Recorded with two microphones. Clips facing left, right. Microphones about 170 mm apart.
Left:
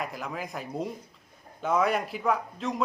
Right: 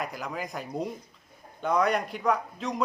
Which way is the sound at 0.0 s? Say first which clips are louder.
Right 1 dB; centre (ahead or behind).